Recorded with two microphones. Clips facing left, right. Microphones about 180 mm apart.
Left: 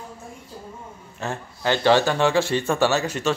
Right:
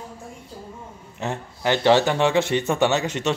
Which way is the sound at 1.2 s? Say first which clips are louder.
Right 1 dB; 20° right (ahead or behind).